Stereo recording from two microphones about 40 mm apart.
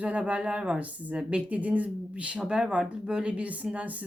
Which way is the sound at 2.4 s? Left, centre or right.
Right.